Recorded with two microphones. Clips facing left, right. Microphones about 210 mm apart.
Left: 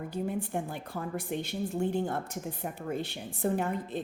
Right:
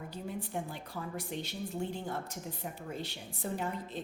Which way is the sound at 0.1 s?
55° left (ahead or behind).